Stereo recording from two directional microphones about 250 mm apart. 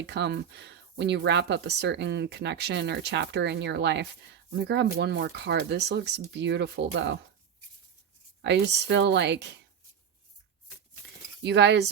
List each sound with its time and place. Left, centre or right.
0.0 s speech: right
8.4 s speech: right
11.4 s speech: right